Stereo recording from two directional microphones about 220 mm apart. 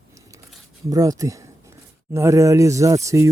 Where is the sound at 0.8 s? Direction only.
15° right (ahead or behind).